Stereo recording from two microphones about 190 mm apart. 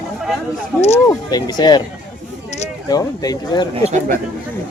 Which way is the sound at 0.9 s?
20° left (ahead or behind).